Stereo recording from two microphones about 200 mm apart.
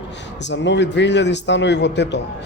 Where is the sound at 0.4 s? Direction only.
60° left (ahead or behind).